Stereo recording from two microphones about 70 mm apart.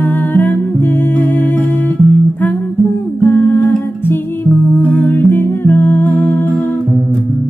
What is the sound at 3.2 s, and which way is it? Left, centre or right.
Humming, left.